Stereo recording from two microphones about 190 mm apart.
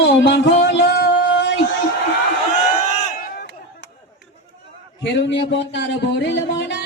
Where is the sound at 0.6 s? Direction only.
65° left (ahead or behind).